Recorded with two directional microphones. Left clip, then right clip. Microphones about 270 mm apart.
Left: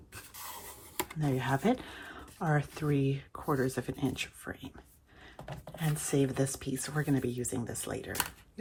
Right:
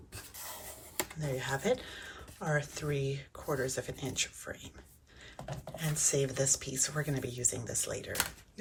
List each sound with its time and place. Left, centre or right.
0.1 s a sound: centre
1.4 s speech: left
5.7 s speech: centre